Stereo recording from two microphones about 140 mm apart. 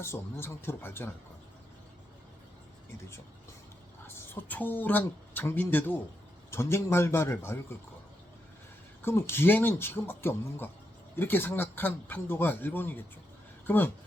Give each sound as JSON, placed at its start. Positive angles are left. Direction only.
{"t": 0.0, "sound": "speech", "side_deg": 15}
{"t": 4.0, "sound": "speech", "side_deg": 15}
{"t": 9.0, "sound": "speech", "side_deg": 15}